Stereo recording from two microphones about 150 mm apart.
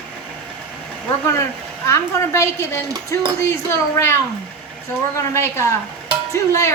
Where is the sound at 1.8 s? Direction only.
20° left (ahead or behind).